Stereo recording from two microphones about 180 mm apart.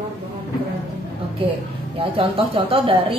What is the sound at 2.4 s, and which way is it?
Speech, 30° right (ahead or behind).